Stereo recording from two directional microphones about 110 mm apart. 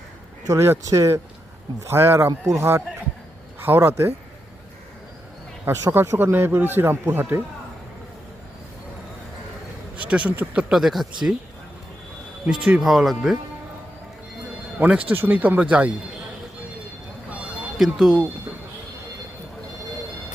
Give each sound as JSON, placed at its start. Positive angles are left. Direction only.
{"t": 0.4, "sound": "a man's voice", "side_deg": -25}
{"t": 5.6, "sound": "a man's voice", "side_deg": -20}
{"t": 10.0, "sound": "speech", "side_deg": -10}
{"t": 12.6, "sound": "speech", "side_deg": -5}
{"t": 14.8, "sound": "speech", "side_deg": -10}
{"t": 17.2, "sound": "a sound", "side_deg": -10}